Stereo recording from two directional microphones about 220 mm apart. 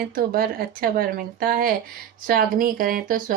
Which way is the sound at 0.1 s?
40° right (ahead or behind).